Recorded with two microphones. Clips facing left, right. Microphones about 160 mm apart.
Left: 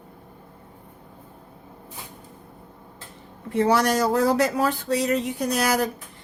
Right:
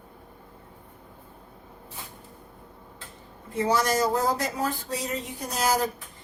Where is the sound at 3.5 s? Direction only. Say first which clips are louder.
Left 4 dB; 65° left (ahead or behind).